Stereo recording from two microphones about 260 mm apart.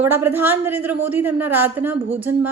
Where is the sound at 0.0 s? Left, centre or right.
Centre.